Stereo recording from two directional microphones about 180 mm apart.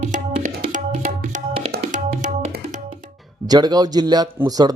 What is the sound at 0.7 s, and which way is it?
Tabla, 45° right (ahead or behind).